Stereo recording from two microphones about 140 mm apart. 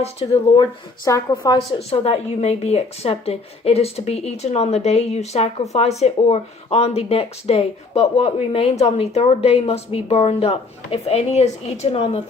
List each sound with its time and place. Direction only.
0.2 s speech: 40° left (ahead or behind)
0.5 s speech: 30° left (ahead or behind)
1.5 s speech: 45° left (ahead or behind)